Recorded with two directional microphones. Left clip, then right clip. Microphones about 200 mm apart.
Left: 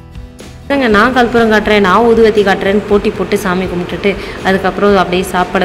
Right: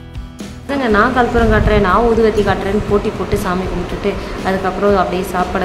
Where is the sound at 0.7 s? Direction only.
20° left (ahead or behind).